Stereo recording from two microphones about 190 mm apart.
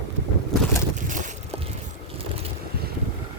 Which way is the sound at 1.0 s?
40° right (ahead or behind).